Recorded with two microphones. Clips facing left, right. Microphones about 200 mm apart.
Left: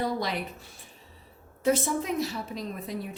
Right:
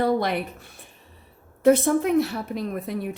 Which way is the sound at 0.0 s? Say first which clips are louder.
Right 7 dB; 60° right (ahead or behind).